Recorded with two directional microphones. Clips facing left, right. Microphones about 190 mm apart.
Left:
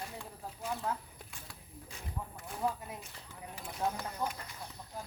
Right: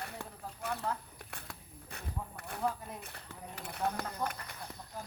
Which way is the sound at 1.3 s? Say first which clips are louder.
Right 4 dB; 65° right (ahead or behind).